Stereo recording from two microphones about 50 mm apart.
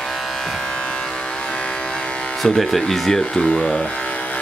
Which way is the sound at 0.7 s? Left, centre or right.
Centre.